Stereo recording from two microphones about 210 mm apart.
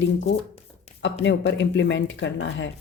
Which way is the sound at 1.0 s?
60° left (ahead or behind).